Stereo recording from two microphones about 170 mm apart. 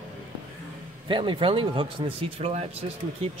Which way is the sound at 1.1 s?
30° right (ahead or behind).